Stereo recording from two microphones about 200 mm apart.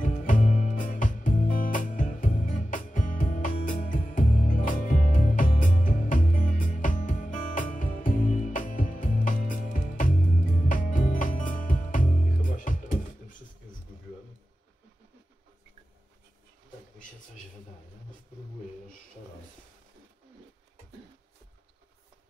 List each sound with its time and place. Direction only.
0.0 s music: 40° left (ahead or behind)